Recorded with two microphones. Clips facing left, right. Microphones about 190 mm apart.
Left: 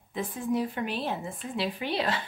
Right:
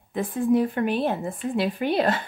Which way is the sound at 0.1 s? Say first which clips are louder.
Right 8 dB; 55° right (ahead or behind).